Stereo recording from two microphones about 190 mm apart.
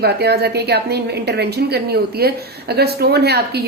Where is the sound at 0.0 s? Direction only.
60° right (ahead or behind).